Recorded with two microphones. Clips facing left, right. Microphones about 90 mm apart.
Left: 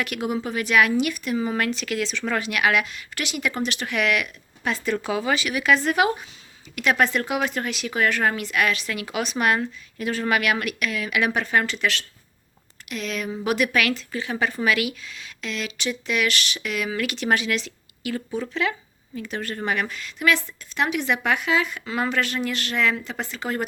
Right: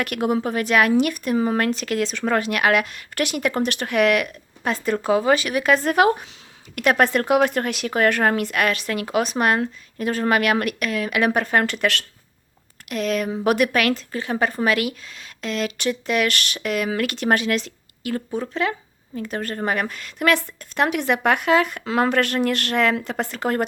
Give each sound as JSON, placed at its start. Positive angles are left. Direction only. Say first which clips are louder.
{"t": 0.0, "sound": "speech", "louder": "right 4 dB", "side_deg": -50}
{"t": 11.3, "sound": "speech", "louder": "right 3 dB", "side_deg": -50}
{"t": 18.5, "sound": "a sound", "louder": "right 2 dB", "side_deg": -40}
{"t": 19.3, "sound": "a woman's voice", "louder": "right 2 dB", "side_deg": -40}